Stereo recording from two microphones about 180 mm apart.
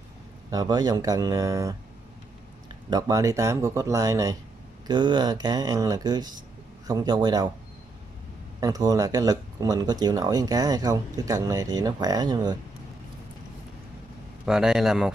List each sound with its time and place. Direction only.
0.5 s speech: 20° right (ahead or behind)
2.9 s speech: 20° right (ahead or behind)
8.5 s speech: 20° right (ahead or behind)
14.4 s a man's voice: 5° right (ahead or behind)